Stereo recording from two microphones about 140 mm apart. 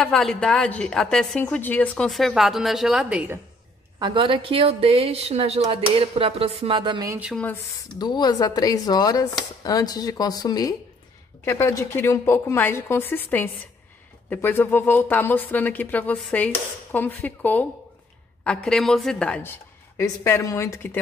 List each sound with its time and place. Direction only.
0.0 s a woman's voice: 5° left (ahead or behind)
4.0 s a woman's voice: 35° right (ahead or behind)
7.8 s a woman's voice: 30° left (ahead or behind)